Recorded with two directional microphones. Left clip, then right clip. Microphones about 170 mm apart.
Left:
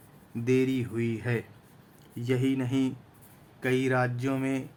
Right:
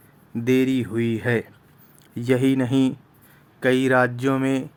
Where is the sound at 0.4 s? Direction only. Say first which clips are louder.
Right 6 dB; 45° right (ahead or behind).